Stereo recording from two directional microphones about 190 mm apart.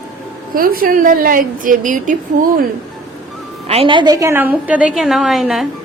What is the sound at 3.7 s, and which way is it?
A woman's voice, 30° right (ahead or behind).